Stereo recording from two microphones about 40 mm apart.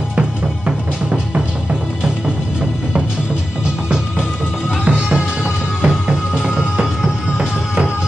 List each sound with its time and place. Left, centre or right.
0.1 s music: right
4.8 s music: right